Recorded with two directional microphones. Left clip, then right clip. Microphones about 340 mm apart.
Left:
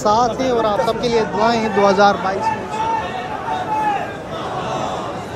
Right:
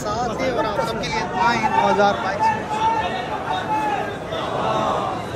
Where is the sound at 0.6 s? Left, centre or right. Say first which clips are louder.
Left 5 dB; centre.